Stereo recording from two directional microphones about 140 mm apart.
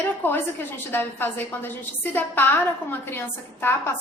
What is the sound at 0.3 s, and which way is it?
A woman's voice, 15° left (ahead or behind).